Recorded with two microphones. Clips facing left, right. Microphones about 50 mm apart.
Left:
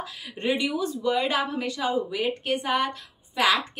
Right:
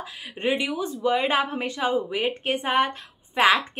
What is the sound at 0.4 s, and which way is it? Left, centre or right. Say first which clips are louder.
A woman's voice: even; centre.